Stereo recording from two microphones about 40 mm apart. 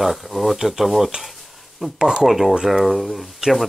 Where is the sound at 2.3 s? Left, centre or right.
Centre.